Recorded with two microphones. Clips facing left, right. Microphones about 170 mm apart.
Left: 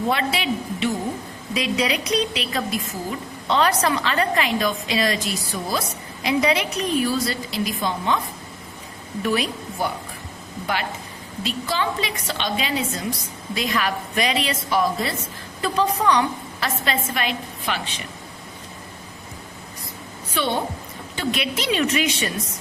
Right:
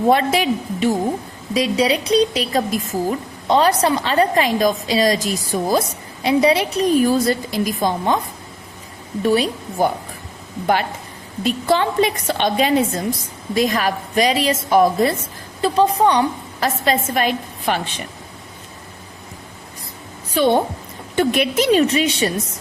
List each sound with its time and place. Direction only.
0.1 s a woman's voice: 45° right (ahead or behind)
6.2 s a woman's voice: 35° right (ahead or behind)
9.2 s a woman's voice: 35° right (ahead or behind)
11.4 s a woman's voice: 55° right (ahead or behind)
15.6 s a woman's voice: 30° right (ahead or behind)
16.6 s a woman's voice: 45° right (ahead or behind)
20.3 s a woman's voice: 45° right (ahead or behind)